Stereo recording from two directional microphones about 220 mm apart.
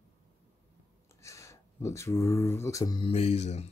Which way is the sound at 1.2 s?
15° left (ahead or behind).